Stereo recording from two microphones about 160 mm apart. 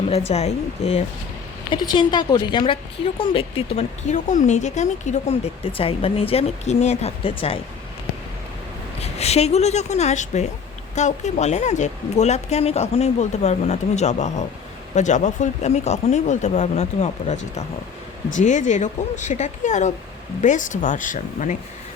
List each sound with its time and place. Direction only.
0.3 s speech: 40° left (ahead or behind)
1.9 s a woman's voice: 30° left (ahead or behind)
9.0 s a woman's voice: 40° left (ahead or behind)